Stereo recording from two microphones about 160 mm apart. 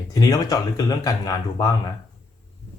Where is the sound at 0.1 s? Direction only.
25° left (ahead or behind).